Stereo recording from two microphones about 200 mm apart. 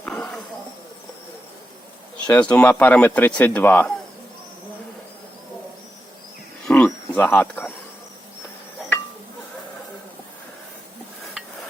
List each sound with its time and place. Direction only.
0.0 s snake: 5° left (ahead or behind)
2.3 s speech: 5° left (ahead or behind)
6.7 s a sound: 5° left (ahead or behind)